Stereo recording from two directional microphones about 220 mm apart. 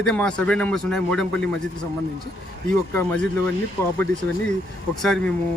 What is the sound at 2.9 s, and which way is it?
Speech, 10° left (ahead or behind).